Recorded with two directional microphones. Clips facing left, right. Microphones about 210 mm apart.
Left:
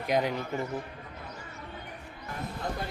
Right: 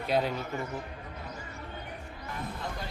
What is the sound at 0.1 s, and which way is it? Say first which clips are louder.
Speech: left 1 dB; 15° left (ahead or behind).